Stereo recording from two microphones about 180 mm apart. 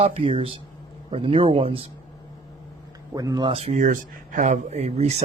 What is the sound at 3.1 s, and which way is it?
Speech, 20° right (ahead or behind).